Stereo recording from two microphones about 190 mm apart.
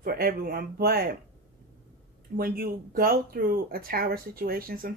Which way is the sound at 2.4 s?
50° right (ahead or behind).